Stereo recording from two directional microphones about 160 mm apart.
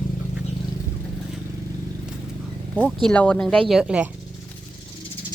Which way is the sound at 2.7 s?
5° left (ahead or behind).